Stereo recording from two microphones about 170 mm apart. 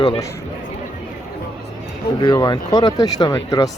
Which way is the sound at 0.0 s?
25° left (ahead or behind).